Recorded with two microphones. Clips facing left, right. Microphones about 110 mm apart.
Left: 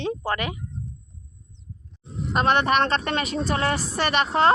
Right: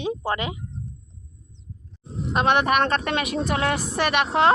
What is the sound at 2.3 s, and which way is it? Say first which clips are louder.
A woman's voice: even; centre (ahead or behind).